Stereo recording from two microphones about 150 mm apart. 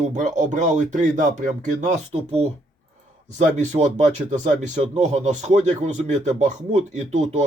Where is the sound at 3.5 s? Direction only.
50° right (ahead or behind).